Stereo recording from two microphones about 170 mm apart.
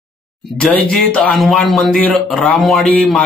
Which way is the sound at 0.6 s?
5° left (ahead or behind).